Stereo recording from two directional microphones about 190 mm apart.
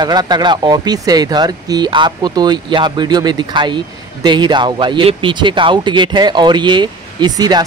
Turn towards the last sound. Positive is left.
turn(degrees=-20)  # may be behind; listen again after turning